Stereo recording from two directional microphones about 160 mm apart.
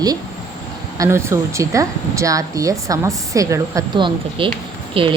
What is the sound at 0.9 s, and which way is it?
A woman's voice, 20° right (ahead or behind).